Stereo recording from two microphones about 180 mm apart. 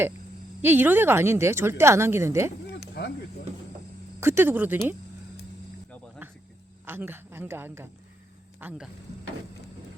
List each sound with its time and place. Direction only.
0.6 s speech: 10° right (ahead or behind)
2.6 s a sound: 70° left (ahead or behind)
4.2 s speech: 15° right (ahead or behind)
6.2 s cricket: 10° right (ahead or behind)
6.8 s speech: 10° right (ahead or behind)